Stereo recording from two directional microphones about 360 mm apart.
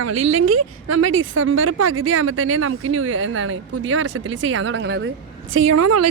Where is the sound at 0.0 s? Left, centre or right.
Right.